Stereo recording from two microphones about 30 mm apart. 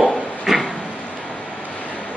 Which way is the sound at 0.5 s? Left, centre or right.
Centre.